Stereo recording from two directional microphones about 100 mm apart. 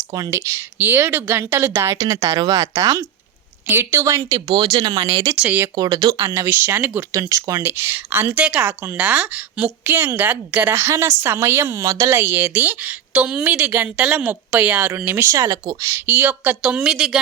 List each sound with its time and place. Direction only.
0.3 s speech: 25° right (ahead or behind); by 4.8 s 55° right (ahead or behind)
4.8 s speech: 45° right (ahead or behind)
5.4 s a woman's voice: 15° right (ahead or behind)
5.7 s speech: 40° right (ahead or behind)
6.5 s speech: 20° right (ahead or behind)
7.2 s speech: 35° right (ahead or behind)
12.1 s a woman's voice: 20° right (ahead or behind)
15.4 s speech: 35° right (ahead or behind)
16.0 s a woman's voice: 15° right (ahead or behind)